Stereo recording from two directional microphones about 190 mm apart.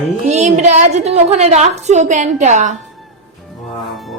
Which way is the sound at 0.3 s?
40° right (ahead or behind).